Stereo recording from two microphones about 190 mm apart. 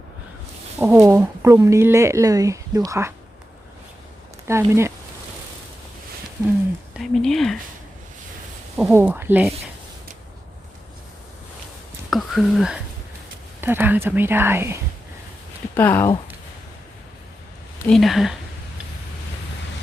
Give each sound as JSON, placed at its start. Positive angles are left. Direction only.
{"t": 0.8, "sound": "speech", "side_deg": -15}
{"t": 4.4, "sound": "speech", "side_deg": -15}
{"t": 7.0, "sound": "speech", "side_deg": 0}
{"t": 9.0, "sound": "speech", "side_deg": -10}
{"t": 12.1, "sound": "speech", "side_deg": 0}
{"t": 15.7, "sound": "speech", "side_deg": 10}
{"t": 17.8, "sound": "speech", "side_deg": 0}